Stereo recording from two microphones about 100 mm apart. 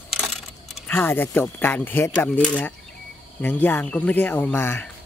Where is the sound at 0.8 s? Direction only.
20° left (ahead or behind).